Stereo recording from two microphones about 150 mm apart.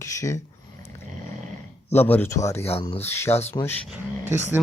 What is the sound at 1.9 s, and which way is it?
Speech, 15° left (ahead or behind).